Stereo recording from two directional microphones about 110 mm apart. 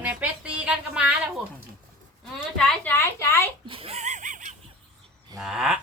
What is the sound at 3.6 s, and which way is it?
Laughter, 55° right (ahead or behind).